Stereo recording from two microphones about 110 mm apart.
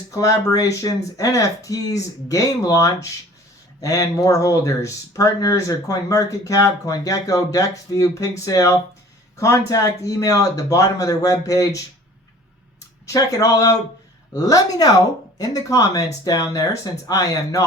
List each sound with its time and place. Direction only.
0.1 s speech: 30° left (ahead or behind)
13.1 s speech: 30° left (ahead or behind)